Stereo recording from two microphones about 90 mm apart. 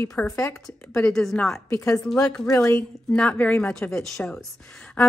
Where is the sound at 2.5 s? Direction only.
30° left (ahead or behind).